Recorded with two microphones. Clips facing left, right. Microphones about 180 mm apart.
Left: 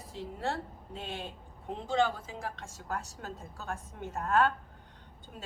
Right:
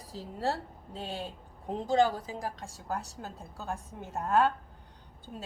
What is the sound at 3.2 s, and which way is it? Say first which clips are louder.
Speech: even; 25° right (ahead or behind).